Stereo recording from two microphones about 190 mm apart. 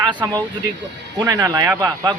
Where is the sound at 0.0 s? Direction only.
20° right (ahead or behind).